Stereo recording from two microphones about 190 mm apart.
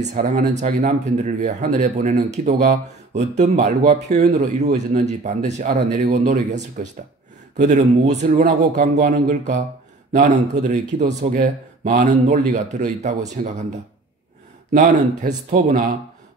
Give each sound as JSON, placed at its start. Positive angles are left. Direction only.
{"t": 0.0, "sound": "speech", "side_deg": -45}
{"t": 14.7, "sound": "speech", "side_deg": -40}